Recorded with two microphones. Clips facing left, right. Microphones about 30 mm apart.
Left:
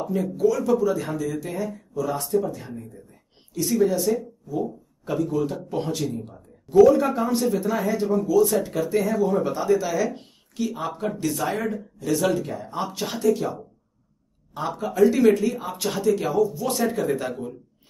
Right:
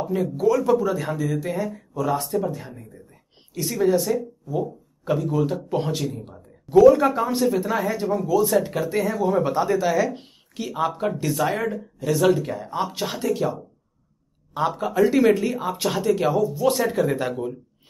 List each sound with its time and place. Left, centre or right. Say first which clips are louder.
0.0 s speech: right 1 dB; centre
14.5 s speech: right 1 dB; right